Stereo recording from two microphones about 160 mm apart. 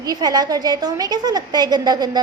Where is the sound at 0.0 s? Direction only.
25° right (ahead or behind).